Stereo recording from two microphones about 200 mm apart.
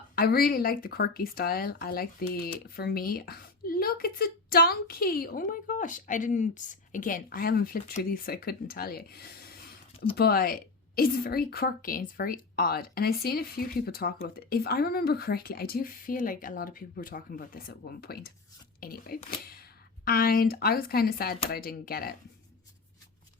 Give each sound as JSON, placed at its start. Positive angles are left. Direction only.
{"t": 0.2, "sound": "a woman's voice", "side_deg": 50}